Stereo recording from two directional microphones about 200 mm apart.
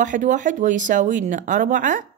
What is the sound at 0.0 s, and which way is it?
Speech, 40° right (ahead or behind).